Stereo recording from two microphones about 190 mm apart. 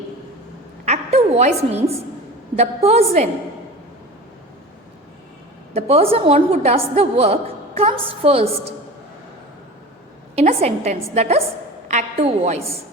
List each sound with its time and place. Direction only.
0.9 s a woman's voice: 35° right (ahead or behind)
5.7 s a woman's voice: 30° right (ahead or behind)
10.3 s a woman's voice: 35° right (ahead or behind)